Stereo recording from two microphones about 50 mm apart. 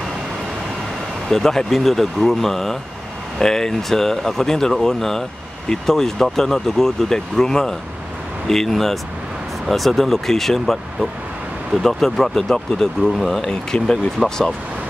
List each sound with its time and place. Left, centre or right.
1.3 s speech: centre
11.8 s speech: centre
13.2 s speech: centre
13.5 s speech: centre